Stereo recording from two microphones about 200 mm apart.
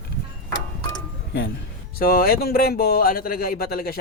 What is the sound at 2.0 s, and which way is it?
Speech, 45° left (ahead or behind).